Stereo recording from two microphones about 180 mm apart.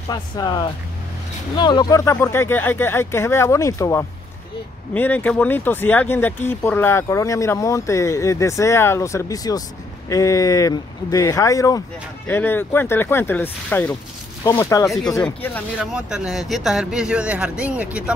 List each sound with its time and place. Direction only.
0.1 s speech: 25° left (ahead or behind)
15.8 s speech: 5° right (ahead or behind)